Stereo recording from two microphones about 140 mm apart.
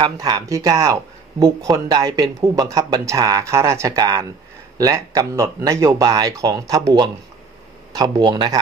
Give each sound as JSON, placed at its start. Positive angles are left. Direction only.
{"t": 0.0, "sound": "speech", "side_deg": -30}